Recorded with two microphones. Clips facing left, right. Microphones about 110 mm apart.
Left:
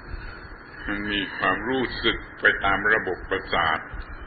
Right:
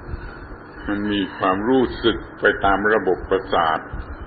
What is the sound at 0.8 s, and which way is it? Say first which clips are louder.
A man's voice: right 8 dB; 25° right (ahead or behind).